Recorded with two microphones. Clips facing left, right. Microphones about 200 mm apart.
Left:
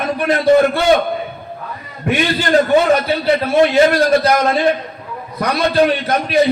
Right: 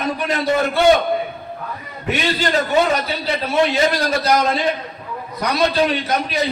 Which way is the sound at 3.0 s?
55° left (ahead or behind).